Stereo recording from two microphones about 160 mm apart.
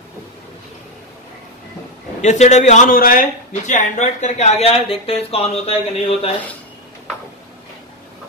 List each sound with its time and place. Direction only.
2.2 s a man's voice: 45° left (ahead or behind)